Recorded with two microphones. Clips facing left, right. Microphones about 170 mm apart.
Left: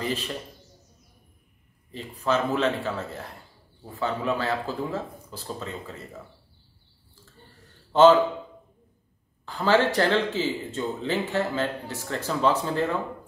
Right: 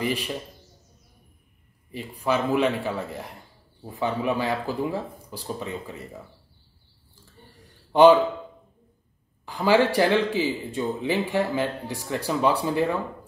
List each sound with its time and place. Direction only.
0.0 s speech: 15° right (ahead or behind)
1.9 s speech: 10° right (ahead or behind)
7.9 s a man's voice: 15° right (ahead or behind)
9.5 s speech: 10° right (ahead or behind)